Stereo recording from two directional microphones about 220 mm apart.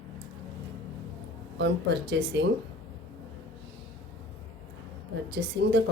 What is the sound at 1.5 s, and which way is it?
Speech, 50° right (ahead or behind).